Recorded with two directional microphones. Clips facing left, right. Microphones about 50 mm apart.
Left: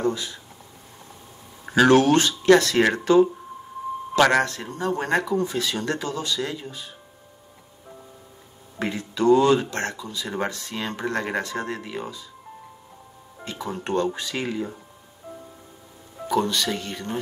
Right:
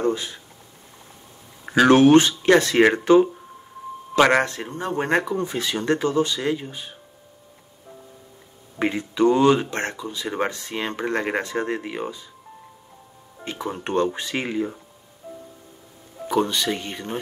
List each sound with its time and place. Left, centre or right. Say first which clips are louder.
0.0 s speech: right 2 dB; right
1.9 s speech: right 5 dB; right
8.7 s speech: right 4 dB; right
13.4 s speech: right 2 dB; right
16.3 s speech: right 1 dB; right